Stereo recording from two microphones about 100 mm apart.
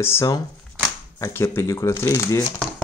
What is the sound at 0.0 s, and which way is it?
Speech, 25° left (ahead or behind).